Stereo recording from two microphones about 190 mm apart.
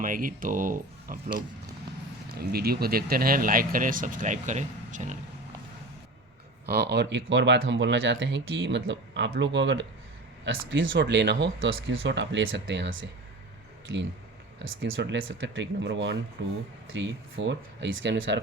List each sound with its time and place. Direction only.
0.0 s speech: 45° right (ahead or behind)
6.7 s speech: 60° right (ahead or behind); by 13.1 s 75° right (ahead or behind)
14.6 s speech: 90° right; by 18.3 s 70° right (ahead or behind)